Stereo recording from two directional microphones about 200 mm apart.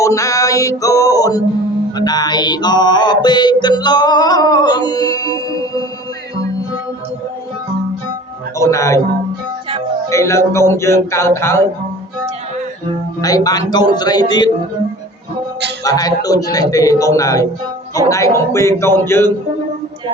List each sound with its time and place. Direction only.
0.0 s music: 15° left (ahead or behind)
8.5 s a man's voice: 15° left (ahead or behind)
10.1 s speech: 15° left (ahead or behind)
13.2 s a man's voice: 20° left (ahead or behind)
15.8 s speech: 20° left (ahead or behind)